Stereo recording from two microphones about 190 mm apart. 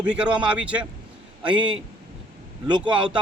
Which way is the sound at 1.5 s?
25° right (ahead or behind).